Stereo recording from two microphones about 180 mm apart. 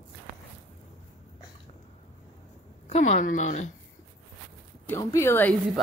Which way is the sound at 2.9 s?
40° left (ahead or behind).